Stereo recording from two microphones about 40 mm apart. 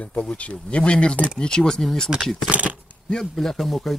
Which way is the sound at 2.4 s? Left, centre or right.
Right.